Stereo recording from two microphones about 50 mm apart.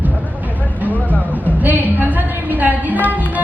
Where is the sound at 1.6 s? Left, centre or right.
Right.